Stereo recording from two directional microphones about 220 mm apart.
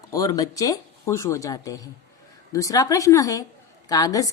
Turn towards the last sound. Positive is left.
turn(degrees=15)  # may be behind; listen again after turning